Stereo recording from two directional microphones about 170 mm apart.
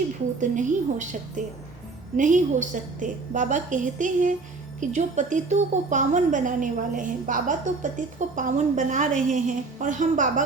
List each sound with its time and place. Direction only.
0.3 s a woman's voice: 45° right (ahead or behind)
2.1 s a woman's voice: 45° right (ahead or behind)